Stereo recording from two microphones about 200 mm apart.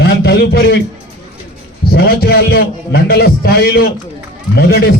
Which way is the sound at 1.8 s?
50° left (ahead or behind).